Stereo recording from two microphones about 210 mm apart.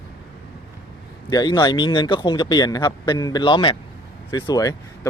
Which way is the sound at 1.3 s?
20° left (ahead or behind).